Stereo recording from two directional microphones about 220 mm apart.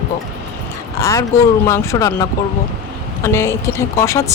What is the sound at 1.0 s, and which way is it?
Speech, 15° left (ahead or behind).